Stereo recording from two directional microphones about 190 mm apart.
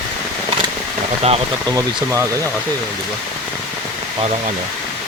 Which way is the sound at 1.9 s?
15° right (ahead or behind).